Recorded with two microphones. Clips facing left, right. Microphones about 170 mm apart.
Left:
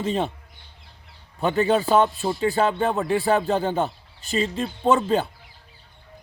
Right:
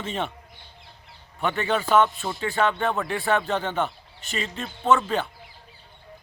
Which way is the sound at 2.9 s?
20° left (ahead or behind).